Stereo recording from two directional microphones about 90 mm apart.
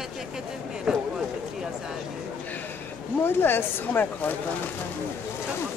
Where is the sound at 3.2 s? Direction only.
25° left (ahead or behind).